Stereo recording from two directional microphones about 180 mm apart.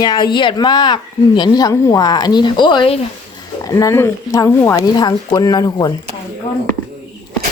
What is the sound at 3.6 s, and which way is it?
Speech, 20° left (ahead or behind).